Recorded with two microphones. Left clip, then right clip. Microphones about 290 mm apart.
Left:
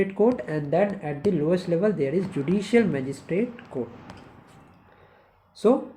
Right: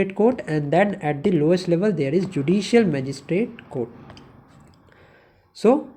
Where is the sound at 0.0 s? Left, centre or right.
Right.